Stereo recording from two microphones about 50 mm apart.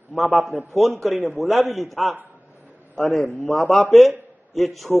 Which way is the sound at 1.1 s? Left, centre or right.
Right.